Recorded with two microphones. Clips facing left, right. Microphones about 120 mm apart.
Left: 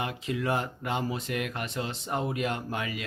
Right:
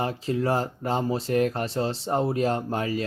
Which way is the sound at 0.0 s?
35° right (ahead or behind).